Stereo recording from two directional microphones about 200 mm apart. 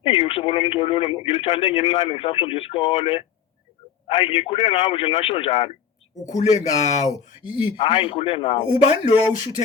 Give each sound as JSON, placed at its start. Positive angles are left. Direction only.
{"t": 0.0, "sound": "speech", "side_deg": 30}